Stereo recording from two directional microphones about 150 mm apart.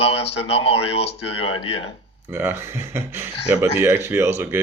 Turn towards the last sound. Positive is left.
turn(degrees=-15)  # may be behind; listen again after turning